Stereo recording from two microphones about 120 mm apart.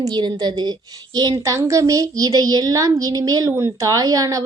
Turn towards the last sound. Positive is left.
turn(degrees=-30)  # may be behind; listen again after turning